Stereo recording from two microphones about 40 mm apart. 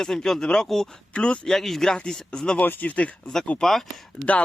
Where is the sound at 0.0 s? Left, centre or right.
Centre.